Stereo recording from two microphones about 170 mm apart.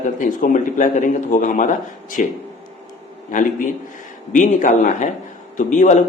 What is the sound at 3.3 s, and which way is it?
A man's voice, 50° left (ahead or behind).